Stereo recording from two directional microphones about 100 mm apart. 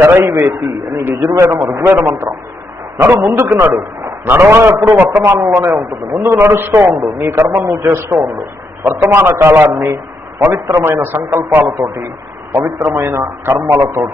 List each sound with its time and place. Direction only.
0.0 s a man's voice: 25° right (ahead or behind)